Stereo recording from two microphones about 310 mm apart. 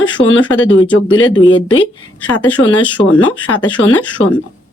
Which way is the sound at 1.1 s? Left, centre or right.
Left.